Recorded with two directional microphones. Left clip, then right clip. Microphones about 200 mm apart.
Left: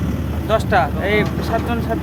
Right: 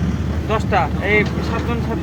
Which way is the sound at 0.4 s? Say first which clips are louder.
Left 2 dB; 10° left (ahead or behind).